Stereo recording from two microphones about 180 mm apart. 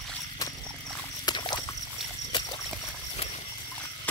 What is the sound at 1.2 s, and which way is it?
Horse, 25° left (ahead or behind).